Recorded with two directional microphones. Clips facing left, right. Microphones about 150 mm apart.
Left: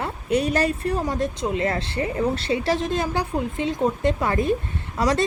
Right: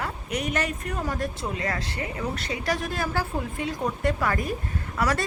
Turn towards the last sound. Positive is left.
turn(degrees=25)  # may be behind; listen again after turning